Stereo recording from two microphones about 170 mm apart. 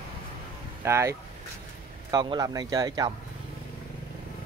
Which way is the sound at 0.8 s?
15° right (ahead or behind).